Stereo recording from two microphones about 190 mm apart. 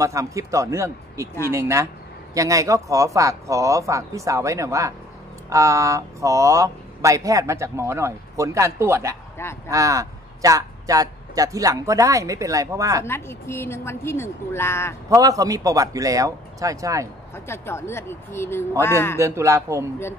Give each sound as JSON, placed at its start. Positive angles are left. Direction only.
{"t": 0.0, "sound": "speech", "side_deg": -15}
{"t": 13.0, "sound": "a woman's voice", "side_deg": 15}
{"t": 15.0, "sound": "speech", "side_deg": -15}
{"t": 17.5, "sound": "a woman's voice", "side_deg": 15}
{"t": 19.1, "sound": "speech", "side_deg": -15}